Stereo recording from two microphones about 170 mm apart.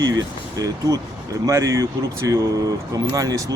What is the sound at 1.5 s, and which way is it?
Speech, 20° right (ahead or behind).